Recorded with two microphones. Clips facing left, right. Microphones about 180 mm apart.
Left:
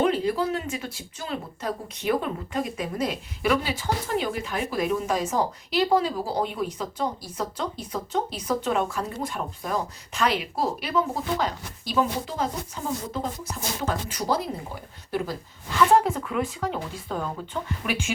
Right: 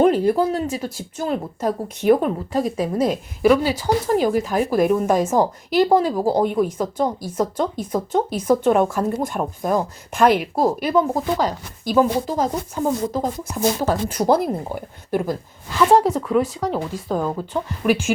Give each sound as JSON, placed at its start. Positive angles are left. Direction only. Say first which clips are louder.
{"t": 0.0, "sound": "speech", "louder": "right 7 dB", "side_deg": -45}
{"t": 16.0, "sound": "speech", "louder": "right 6 dB", "side_deg": -40}